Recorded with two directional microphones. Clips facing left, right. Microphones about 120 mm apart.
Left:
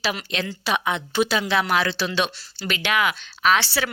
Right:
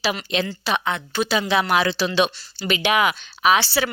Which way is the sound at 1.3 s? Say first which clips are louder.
Right 6 dB; 5° right (ahead or behind).